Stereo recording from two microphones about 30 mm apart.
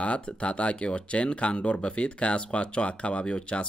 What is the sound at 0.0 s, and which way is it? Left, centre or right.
Speech, left.